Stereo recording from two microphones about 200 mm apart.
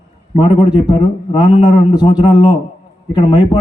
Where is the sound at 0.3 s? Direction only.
25° left (ahead or behind).